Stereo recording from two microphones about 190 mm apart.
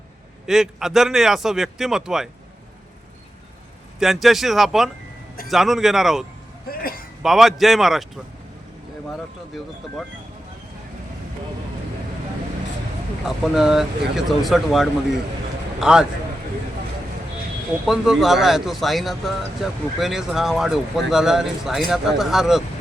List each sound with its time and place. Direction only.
0.4 s speech: centre (ahead or behind)
4.0 s speech: centre (ahead or behind)
6.7 s a sound: 50° left (ahead or behind)
7.2 s speech: centre (ahead or behind)
13.2 s speech: centre (ahead or behind)
17.8 s speech: centre (ahead or behind)